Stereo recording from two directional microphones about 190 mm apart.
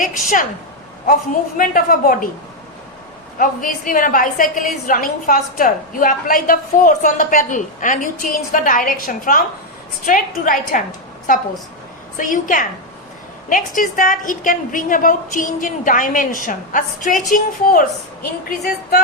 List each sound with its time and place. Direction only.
0.0 s a woman's voice: 45° left (ahead or behind)
1.5 s a woman's voice: 45° left (ahead or behind)
3.3 s a woman's voice: 45° left (ahead or behind)
12.1 s a woman's voice: 45° left (ahead or behind)